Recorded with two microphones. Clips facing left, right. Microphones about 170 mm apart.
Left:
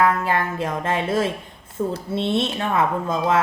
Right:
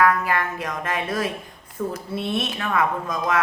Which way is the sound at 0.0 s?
25° left (ahead or behind).